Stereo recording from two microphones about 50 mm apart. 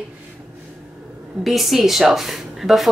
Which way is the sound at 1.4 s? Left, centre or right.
Centre.